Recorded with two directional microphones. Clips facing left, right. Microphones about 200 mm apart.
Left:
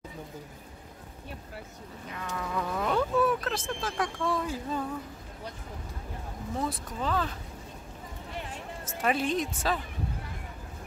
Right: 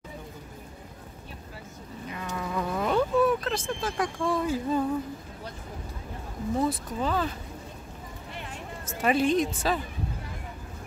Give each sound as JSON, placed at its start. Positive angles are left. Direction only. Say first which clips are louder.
{"t": 2.0, "sound": "insect", "louder": "right 2 dB", "side_deg": -5}
{"t": 4.2, "sound": "speech", "louder": "right 6 dB", "side_deg": -10}
{"t": 6.6, "sound": "a woman's voice", "louder": "right 4 dB", "side_deg": -5}
{"t": 8.8, "sound": "a woman's voice", "louder": "right 4 dB", "side_deg": 0}